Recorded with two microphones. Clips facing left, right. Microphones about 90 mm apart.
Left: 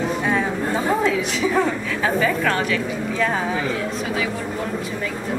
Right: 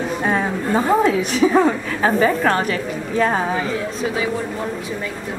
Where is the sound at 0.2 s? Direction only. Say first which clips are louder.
Right 1 dB; 40° right (ahead or behind).